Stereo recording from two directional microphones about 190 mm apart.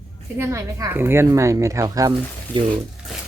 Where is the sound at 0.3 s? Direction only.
15° right (ahead or behind).